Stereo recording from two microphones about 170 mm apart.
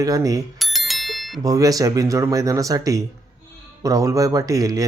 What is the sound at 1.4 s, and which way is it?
Speech, 20° right (ahead or behind).